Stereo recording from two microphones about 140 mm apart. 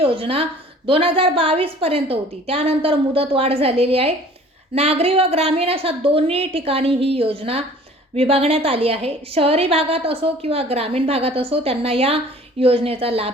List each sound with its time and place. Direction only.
0.0 s a woman's voice: 40° right (ahead or behind)